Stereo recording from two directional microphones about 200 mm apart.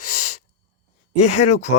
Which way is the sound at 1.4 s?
35° left (ahead or behind).